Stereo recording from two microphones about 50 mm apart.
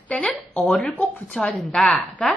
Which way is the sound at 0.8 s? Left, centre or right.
Left.